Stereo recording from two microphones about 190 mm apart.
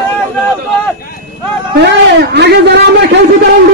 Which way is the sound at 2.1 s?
60° right (ahead or behind).